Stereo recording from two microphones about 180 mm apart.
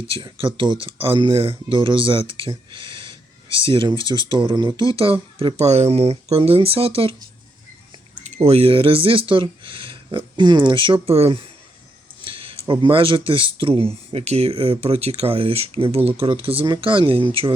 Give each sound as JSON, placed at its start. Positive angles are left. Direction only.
{"t": 0.1, "sound": "speech", "side_deg": -30}
{"t": 8.2, "sound": "speech", "side_deg": -35}
{"t": 12.2, "sound": "a sound", "side_deg": -30}
{"t": 12.8, "sound": "speech", "side_deg": -30}